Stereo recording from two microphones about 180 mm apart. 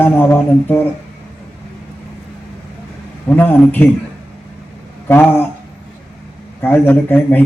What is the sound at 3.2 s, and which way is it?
Speech, 10° left (ahead or behind).